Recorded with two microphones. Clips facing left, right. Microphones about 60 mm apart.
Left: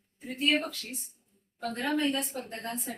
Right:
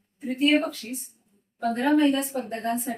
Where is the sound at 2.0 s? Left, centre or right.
Centre.